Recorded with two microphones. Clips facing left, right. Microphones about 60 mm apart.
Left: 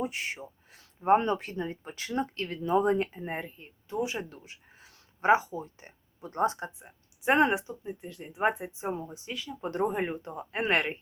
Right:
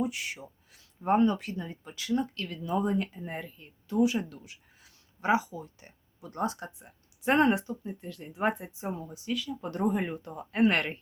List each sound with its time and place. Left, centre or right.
0.0 s speech: left